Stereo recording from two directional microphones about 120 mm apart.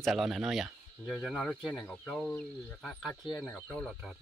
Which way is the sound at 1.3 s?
5° left (ahead or behind).